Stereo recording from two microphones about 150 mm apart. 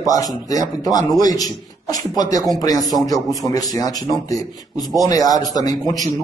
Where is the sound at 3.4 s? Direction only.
25° left (ahead or behind).